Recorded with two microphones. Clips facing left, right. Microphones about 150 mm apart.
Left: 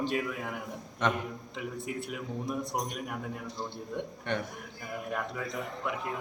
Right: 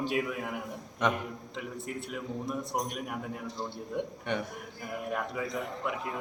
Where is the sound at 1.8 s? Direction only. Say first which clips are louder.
Even; centre (ahead or behind).